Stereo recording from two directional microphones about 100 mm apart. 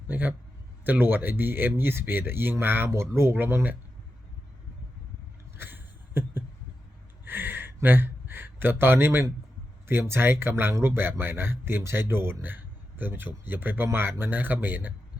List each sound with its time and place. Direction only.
0.1 s a man's voice: 15° right (ahead or behind)
5.5 s a sound: 20° right (ahead or behind)
9.8 s speech: 25° right (ahead or behind)